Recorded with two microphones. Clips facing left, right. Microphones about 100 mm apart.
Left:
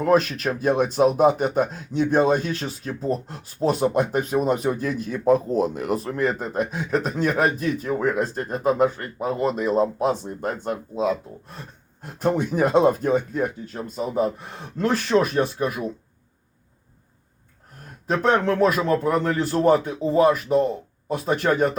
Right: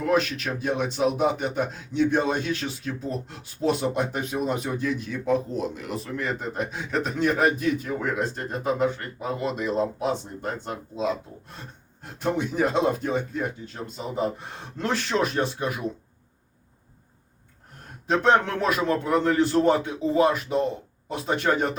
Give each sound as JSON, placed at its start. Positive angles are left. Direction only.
{"t": 0.0, "sound": "speech", "side_deg": 40}
{"t": 18.2, "sound": "speech", "side_deg": 40}